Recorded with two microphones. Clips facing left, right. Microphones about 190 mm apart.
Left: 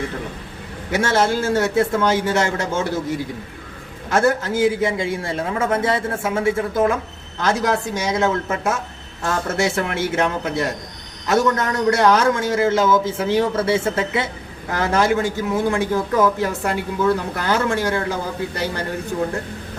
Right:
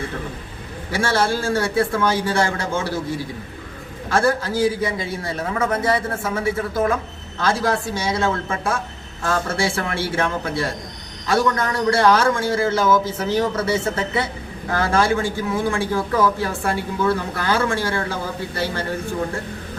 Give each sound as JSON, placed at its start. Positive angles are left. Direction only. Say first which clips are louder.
{"t": 0.9, "sound": "speech", "louder": "left 2 dB", "side_deg": 20}
{"t": 4.1, "sound": "speech", "louder": "left 1 dB", "side_deg": 20}